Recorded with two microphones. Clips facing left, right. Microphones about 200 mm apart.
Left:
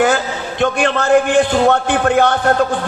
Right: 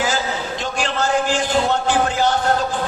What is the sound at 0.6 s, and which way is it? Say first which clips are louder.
A man's voice: left 9 dB; 60° left (ahead or behind).